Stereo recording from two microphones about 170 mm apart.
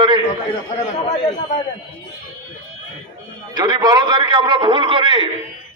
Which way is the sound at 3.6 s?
25° right (ahead or behind).